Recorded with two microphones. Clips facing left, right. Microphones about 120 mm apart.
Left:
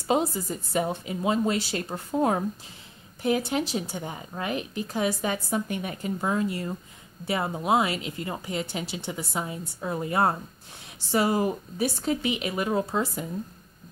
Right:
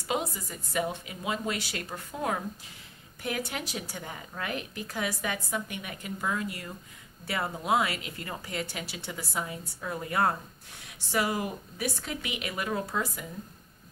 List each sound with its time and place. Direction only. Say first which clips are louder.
0.0 s a woman's voice: left 7 dB; 30° left (ahead or behind)